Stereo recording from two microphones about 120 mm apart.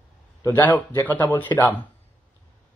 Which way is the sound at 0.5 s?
15° left (ahead or behind).